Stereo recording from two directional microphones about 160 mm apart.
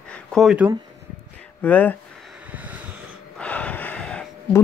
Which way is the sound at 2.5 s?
10° right (ahead or behind).